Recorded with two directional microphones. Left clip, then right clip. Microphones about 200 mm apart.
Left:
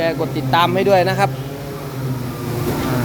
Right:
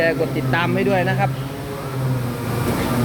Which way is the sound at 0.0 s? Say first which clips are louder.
Right 1 dB; 15° left (ahead or behind).